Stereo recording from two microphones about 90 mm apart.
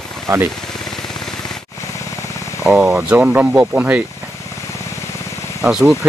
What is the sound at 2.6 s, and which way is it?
Speech, 15° right (ahead or behind).